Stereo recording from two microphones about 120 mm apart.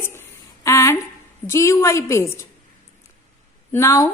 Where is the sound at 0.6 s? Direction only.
25° left (ahead or behind).